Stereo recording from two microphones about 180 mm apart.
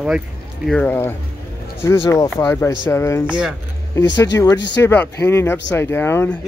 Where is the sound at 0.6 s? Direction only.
10° left (ahead or behind).